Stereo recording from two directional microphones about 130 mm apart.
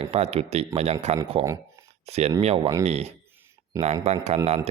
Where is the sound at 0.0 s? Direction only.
50° right (ahead or behind).